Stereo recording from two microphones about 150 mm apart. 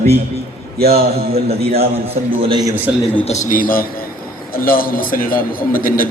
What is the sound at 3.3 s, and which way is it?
A man's voice, 65° left (ahead or behind).